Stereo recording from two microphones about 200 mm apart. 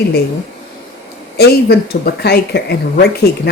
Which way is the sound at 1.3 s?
50° left (ahead or behind).